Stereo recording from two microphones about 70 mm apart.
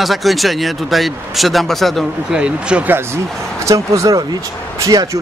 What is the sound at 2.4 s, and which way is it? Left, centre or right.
Speech, centre.